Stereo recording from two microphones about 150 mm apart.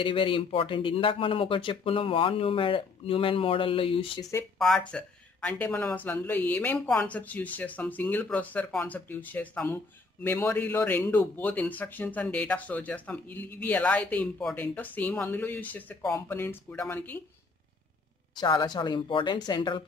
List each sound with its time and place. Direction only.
0.0 s speech: 35° left (ahead or behind)
4.2 s a woman's voice: 20° left (ahead or behind)
4.6 s a man's voice: 5° left (ahead or behind)
18.3 s a woman's voice: 30° left (ahead or behind)